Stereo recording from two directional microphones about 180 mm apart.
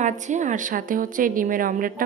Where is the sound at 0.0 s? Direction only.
45° right (ahead or behind).